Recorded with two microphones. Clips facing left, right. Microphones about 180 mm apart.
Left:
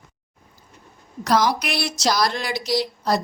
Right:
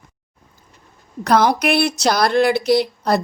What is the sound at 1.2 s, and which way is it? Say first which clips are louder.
Speech: right 4 dB; 60° right (ahead or behind).